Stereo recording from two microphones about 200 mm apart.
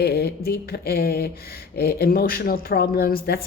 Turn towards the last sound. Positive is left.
turn(degrees=50)  # may be behind; listen again after turning